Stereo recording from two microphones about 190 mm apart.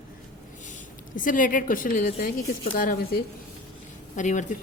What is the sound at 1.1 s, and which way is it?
A woman's voice, 45° left (ahead or behind).